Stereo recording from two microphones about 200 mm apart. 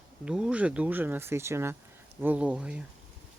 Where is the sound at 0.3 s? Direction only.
5° right (ahead or behind).